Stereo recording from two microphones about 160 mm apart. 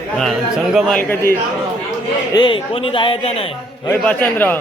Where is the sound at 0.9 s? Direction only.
15° left (ahead or behind).